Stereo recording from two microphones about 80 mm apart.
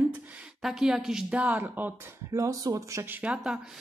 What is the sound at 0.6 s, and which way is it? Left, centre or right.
Speech, centre.